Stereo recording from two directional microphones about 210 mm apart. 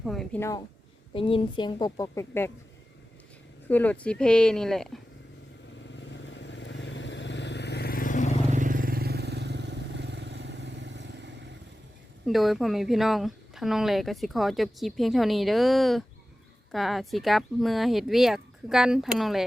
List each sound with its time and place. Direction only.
0.0 s speech: centre (ahead or behind)
0.3 s speech: 15° left (ahead or behind)
1.1 s a woman's voice: 25° left (ahead or behind)
3.7 s speech: 10° left (ahead or behind)
6.0 s vehicle: 60° left (ahead or behind); by 8.3 s 40° left (ahead or behind)
8.4 s vehicle: 40° right (ahead or behind); by 11.5 s 55° right (ahead or behind)
12.2 s speech: centre (ahead or behind)